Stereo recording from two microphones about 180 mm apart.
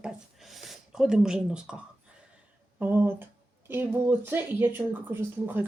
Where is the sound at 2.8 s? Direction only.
10° right (ahead or behind).